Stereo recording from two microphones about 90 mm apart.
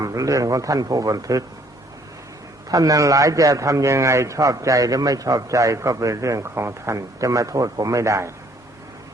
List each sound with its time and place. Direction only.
0.0 s a man's voice: 40° right (ahead or behind)
2.6 s a man's voice: 40° right (ahead or behind)